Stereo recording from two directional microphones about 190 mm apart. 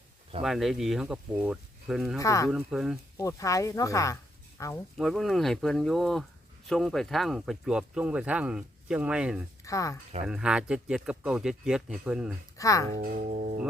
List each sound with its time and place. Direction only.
0.4 s speech: centre (ahead or behind)
2.1 s speech: 15° left (ahead or behind)
2.5 s speech: 5° right (ahead or behind)
3.2 s speech: 15° left (ahead or behind)
4.9 s speech: centre (ahead or behind)
9.6 s speech: 15° left (ahead or behind)
10.2 s speech: 5° right (ahead or behind)
12.5 s speech: 15° left (ahead or behind)
12.9 s speech: 45° right (ahead or behind)